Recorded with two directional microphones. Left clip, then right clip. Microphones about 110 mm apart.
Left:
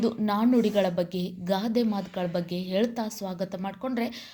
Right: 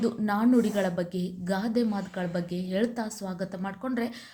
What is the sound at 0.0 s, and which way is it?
A woman's voice, 15° left (ahead or behind).